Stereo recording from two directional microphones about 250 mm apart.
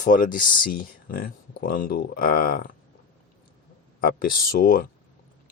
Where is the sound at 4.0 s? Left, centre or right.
Left.